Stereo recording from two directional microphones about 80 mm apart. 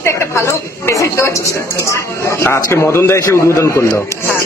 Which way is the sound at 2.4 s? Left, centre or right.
Left.